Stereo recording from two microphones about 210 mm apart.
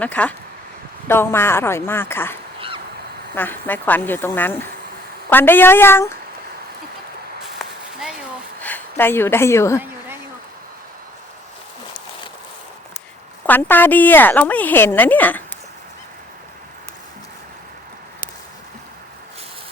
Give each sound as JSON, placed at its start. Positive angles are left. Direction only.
{"t": 0.0, "sound": "a woman's voice", "side_deg": 5}
{"t": 2.6, "sound": "a sound", "side_deg": -25}
{"t": 3.3, "sound": "a woman's voice", "side_deg": 10}
{"t": 8.6, "sound": "a woman's voice", "side_deg": 10}
{"t": 13.4, "sound": "a woman's voice", "side_deg": 10}